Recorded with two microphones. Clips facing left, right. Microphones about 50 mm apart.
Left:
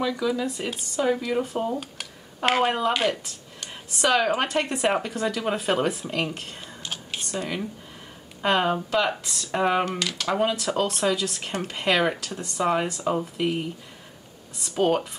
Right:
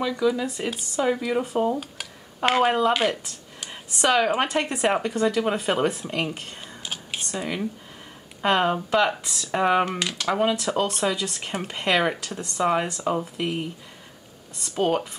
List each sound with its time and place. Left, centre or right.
0.2 s speech: centre
9.8 s speech: centre
10.1 s speech: centre